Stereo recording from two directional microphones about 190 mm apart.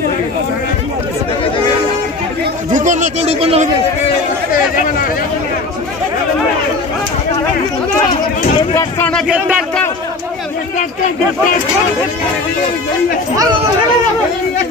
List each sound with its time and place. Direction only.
2.7 s a man's voice: 40° right (ahead or behind)
8.7 s speech: 10° left (ahead or behind)